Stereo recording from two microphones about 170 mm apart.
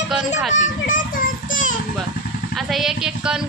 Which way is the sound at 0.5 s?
45° left (ahead or behind).